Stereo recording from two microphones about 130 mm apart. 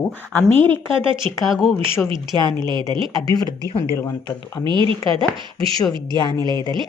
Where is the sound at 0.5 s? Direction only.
15° left (ahead or behind).